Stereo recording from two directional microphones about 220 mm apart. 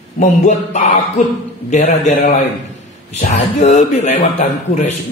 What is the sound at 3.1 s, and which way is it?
Speech, 30° left (ahead or behind).